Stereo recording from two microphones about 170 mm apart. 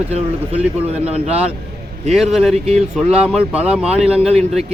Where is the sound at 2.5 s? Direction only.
35° right (ahead or behind).